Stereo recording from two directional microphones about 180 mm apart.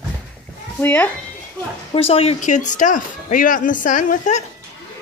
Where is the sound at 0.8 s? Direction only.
10° left (ahead or behind).